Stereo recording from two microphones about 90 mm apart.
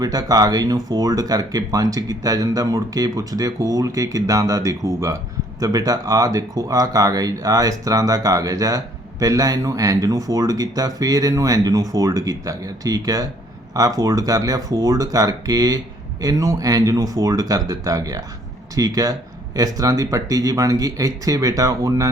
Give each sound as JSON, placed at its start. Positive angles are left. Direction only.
{"t": 0.0, "sound": "speech", "side_deg": -45}